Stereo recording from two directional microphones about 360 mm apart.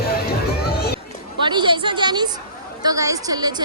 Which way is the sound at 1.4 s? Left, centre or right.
Centre.